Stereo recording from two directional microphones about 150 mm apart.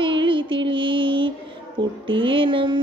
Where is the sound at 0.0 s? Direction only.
35° right (ahead or behind).